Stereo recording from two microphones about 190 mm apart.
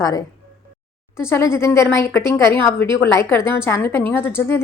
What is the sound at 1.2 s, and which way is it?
A woman's voice, 15° left (ahead or behind).